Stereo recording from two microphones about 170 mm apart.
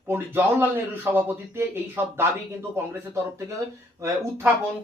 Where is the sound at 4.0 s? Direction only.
20° right (ahead or behind).